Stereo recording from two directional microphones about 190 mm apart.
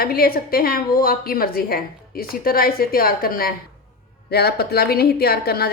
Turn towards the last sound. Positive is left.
turn(degrees=55)  # may be behind; listen again after turning